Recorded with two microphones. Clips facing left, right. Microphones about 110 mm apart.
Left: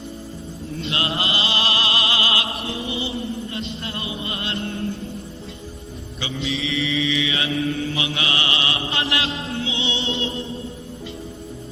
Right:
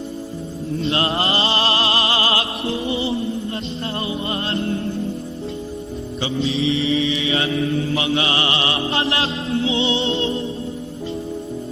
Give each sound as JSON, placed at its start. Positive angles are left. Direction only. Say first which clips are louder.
{"t": 0.8, "sound": "music", "louder": "right 5 dB", "side_deg": -35}
{"t": 6.2, "sound": "mantra", "louder": "right 6 dB", "side_deg": -30}
{"t": 9.0, "sound": "music", "louder": "right 3 dB", "side_deg": -30}